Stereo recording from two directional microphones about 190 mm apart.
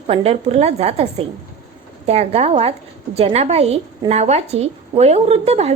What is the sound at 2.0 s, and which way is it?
A woman's voice, 35° right (ahead or behind).